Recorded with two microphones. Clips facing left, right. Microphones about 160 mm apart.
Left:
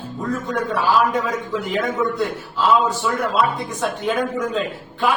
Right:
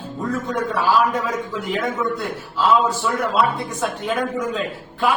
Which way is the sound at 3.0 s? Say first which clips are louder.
Even; centre (ahead or behind).